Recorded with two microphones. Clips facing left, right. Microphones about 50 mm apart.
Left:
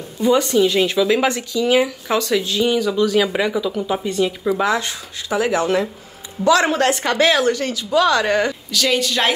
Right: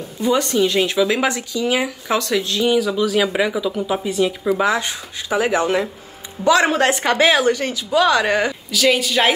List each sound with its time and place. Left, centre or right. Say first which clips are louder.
0.6 s speech: left 1 dB; centre
2.1 s speech: left 1 dB; centre
4.7 s speech: even; right; by 9.3 s centre